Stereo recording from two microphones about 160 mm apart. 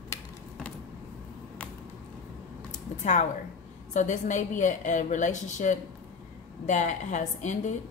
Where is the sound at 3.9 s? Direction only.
50° left (ahead or behind).